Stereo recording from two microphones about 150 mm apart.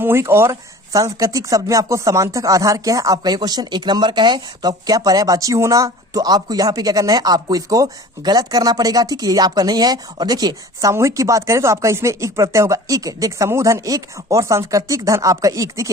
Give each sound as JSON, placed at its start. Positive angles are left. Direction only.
{"t": 0.0, "sound": "speech", "side_deg": -15}